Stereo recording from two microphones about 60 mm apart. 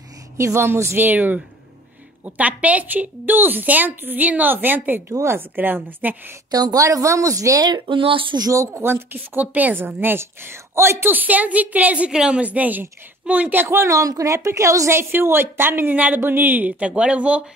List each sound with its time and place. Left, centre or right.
0.4 s a woman's voice: right
0.9 s a woman's voice: right
6.5 s a woman's voice: right
8.8 s a woman's voice: right
13.7 s a woman's voice: right